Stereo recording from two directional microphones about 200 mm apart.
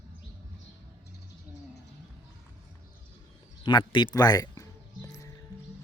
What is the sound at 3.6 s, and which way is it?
Music, 25° left (ahead or behind).